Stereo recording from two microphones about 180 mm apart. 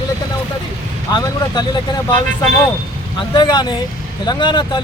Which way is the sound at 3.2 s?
25° left (ahead or behind).